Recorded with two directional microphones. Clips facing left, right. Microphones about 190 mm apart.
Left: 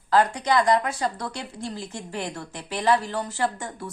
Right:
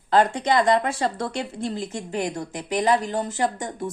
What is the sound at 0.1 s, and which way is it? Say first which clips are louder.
A woman's voice: right 1 dB; 25° right (ahead or behind).